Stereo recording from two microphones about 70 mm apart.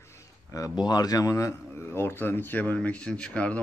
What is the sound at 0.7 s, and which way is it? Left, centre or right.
Speech, left.